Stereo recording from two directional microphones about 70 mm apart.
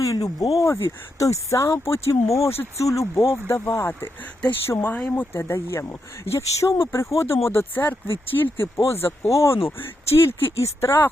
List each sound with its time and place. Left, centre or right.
0.0 s speech: left
0.6 s speech: left